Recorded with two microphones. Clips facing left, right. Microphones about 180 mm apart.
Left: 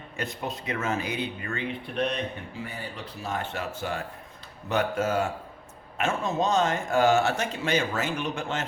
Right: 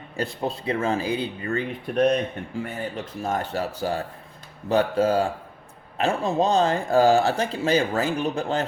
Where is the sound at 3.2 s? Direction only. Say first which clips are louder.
Right 5 dB; 40° right (ahead or behind).